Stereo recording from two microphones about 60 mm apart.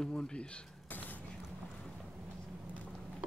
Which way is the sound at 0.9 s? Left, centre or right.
Left.